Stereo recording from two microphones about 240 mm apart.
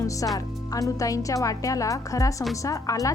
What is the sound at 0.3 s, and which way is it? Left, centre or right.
Speech, centre.